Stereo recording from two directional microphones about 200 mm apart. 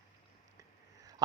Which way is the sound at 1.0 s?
20° right (ahead or behind).